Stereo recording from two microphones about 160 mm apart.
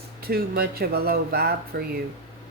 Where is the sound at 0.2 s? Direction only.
70° right (ahead or behind).